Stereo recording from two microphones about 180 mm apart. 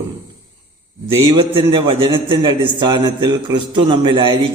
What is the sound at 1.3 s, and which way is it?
A man's voice, 25° right (ahead or behind).